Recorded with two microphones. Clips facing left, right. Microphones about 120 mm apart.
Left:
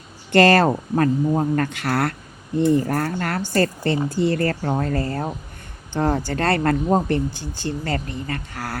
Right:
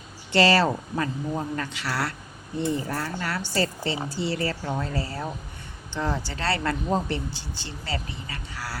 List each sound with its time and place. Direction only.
0.3 s speech: 50° left (ahead or behind)